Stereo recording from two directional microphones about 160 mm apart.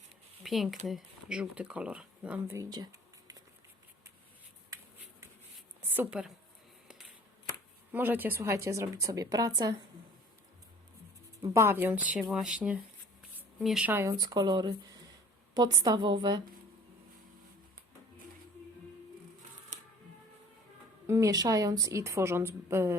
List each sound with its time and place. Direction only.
0.4 s speech: centre (ahead or behind)
2.6 s a sound: 25° right (ahead or behind)
5.8 s a woman's voice: 10° right (ahead or behind)
7.9 s speech: 10° right (ahead or behind)
11.4 s speech: 15° right (ahead or behind)
14.1 s a woman's voice: 25° right (ahead or behind)
21.1 s a woman's voice: 20° right (ahead or behind)